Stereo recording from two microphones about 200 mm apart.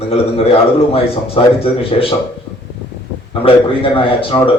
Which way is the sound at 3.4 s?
25° left (ahead or behind).